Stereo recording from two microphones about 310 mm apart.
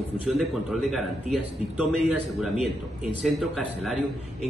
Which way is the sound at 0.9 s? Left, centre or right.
Centre.